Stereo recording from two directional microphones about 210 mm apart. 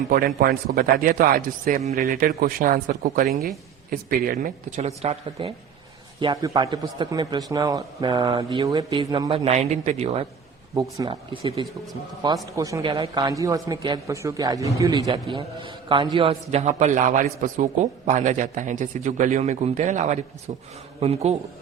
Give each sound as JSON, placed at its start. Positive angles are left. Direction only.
{"t": 0.1, "sound": "a man's voice", "side_deg": -45}
{"t": 10.8, "sound": "a man's voice", "side_deg": -20}